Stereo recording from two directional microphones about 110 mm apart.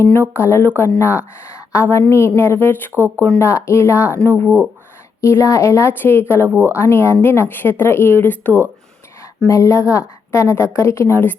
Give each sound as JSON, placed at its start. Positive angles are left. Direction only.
{"t": 0.0, "sound": "a woman's voice", "side_deg": 20}
{"t": 2.9, "sound": "speech", "side_deg": -20}
{"t": 3.3, "sound": "a woman's voice", "side_deg": 25}
{"t": 5.2, "sound": "a woman's voice", "side_deg": 25}
{"t": 9.2, "sound": "a woman's voice", "side_deg": 25}